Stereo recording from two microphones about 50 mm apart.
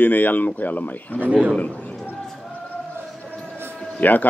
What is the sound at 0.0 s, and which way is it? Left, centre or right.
A man's voice, left.